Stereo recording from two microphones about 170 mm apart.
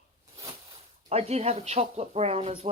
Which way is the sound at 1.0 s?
40° right (ahead or behind).